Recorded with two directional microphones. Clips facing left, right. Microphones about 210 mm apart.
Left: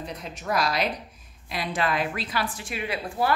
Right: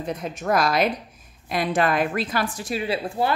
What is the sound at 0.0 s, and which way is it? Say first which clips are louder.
A woman's voice: right 7 dB; 50° right (ahead or behind).